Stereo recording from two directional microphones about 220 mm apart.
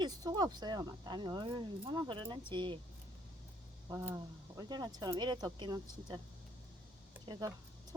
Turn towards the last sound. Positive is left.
turn(degrees=-20)  # may be behind; listen again after turning